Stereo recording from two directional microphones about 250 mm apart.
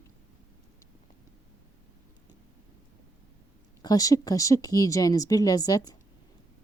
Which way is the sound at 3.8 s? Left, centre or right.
Centre.